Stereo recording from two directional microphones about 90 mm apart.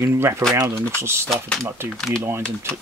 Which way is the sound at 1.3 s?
Centre (ahead or behind).